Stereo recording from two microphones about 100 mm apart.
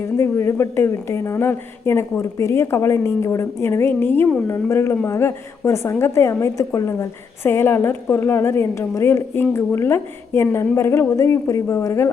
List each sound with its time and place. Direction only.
0.2 s a woman's voice: 25° left (ahead or behind)